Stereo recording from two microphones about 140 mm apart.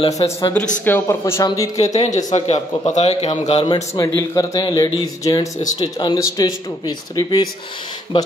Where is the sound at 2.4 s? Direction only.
50° left (ahead or behind).